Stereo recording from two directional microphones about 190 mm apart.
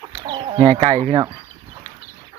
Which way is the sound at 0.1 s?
25° right (ahead or behind).